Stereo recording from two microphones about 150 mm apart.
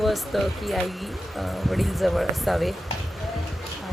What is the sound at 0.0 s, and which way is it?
Speech, centre (ahead or behind).